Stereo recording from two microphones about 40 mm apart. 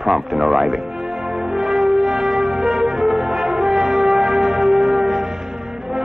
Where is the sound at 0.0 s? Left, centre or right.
Centre.